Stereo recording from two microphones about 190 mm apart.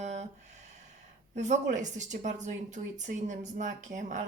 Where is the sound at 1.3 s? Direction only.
40° right (ahead or behind).